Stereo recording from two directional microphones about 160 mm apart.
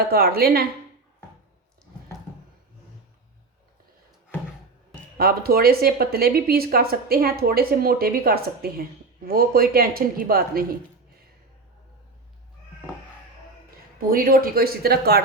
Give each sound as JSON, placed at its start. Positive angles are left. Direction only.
{"t": 0.1, "sound": "speech", "side_deg": -75}
{"t": 5.1, "sound": "speech", "side_deg": -70}
{"t": 14.1, "sound": "speech", "side_deg": -65}